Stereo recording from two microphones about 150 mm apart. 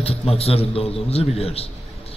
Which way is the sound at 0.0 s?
40° left (ahead or behind).